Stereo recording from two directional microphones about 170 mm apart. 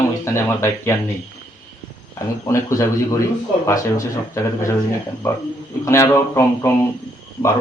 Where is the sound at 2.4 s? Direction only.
15° left (ahead or behind).